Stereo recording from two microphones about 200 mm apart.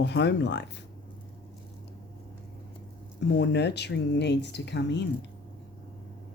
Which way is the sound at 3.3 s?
60° left (ahead or behind).